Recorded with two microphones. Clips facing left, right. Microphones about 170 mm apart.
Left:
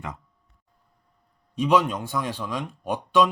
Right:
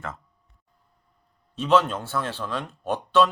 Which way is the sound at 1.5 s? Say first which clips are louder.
Even; 15° left (ahead or behind).